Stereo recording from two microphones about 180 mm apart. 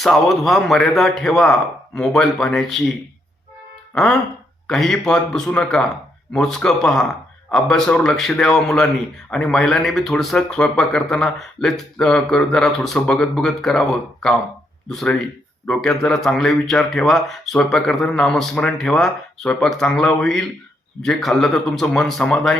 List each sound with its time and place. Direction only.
0.0 s speech: centre (ahead or behind)
3.9 s speech: centre (ahead or behind)